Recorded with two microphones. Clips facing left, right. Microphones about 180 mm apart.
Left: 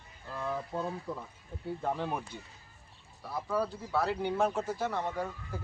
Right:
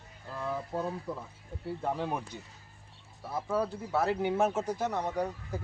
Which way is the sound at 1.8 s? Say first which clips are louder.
Right 1 dB; 10° right (ahead or behind).